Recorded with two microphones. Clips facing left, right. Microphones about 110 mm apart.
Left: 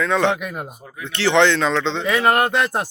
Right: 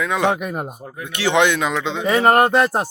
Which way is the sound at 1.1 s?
15° right (ahead or behind).